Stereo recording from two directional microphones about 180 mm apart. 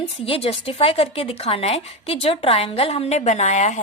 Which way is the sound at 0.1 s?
35° left (ahead or behind).